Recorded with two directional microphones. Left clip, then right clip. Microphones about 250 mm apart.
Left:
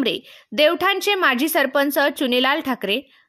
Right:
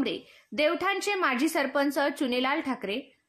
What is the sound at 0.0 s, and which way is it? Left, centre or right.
A woman's voice, left.